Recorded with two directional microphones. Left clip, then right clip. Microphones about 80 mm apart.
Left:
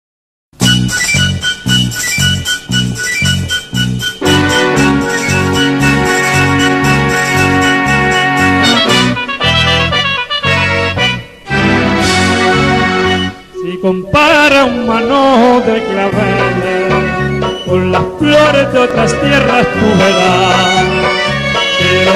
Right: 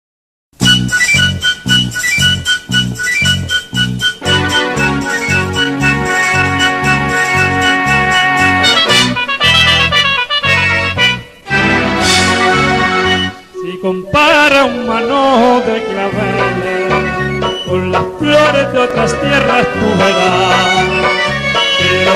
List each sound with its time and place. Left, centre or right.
0.6 s music: right
5.6 s music: right